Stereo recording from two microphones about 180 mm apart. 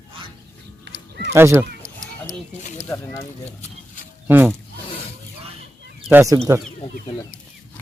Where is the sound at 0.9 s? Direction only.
70° right (ahead or behind).